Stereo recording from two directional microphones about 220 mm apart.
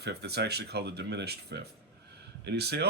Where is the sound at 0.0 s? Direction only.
50° right (ahead or behind).